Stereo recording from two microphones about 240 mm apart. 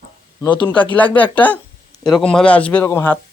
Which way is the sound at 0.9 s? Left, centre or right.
Centre.